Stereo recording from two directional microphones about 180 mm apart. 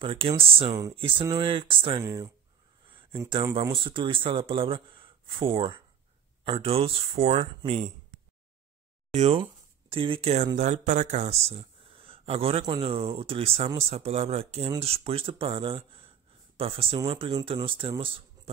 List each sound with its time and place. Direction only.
0.0 s speech: 30° right (ahead or behind)
2.9 s a sound: 30° right (ahead or behind)
3.7 s speech: 30° right (ahead or behind)
9.1 s speech: 35° right (ahead or behind)